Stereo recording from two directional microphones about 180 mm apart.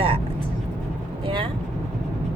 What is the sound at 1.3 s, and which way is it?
Speech, 25° right (ahead or behind).